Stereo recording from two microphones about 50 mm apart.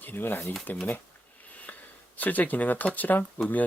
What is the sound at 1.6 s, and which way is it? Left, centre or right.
Speech, left.